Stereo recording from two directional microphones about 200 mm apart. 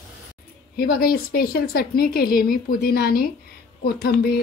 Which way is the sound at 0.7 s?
50° left (ahead or behind).